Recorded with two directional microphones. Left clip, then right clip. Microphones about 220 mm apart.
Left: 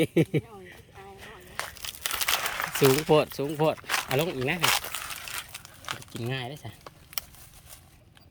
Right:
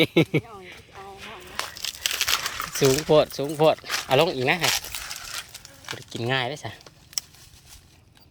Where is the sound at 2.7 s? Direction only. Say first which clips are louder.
Right 3 dB; 10° left (ahead or behind).